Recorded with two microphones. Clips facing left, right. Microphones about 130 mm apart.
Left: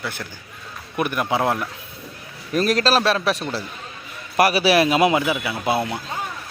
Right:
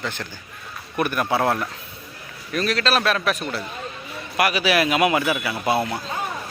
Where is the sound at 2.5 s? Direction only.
40° left (ahead or behind).